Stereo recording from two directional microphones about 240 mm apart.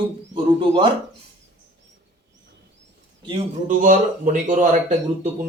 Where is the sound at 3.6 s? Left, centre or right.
Right.